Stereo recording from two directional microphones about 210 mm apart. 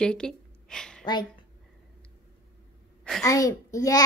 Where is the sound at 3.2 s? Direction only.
15° left (ahead or behind).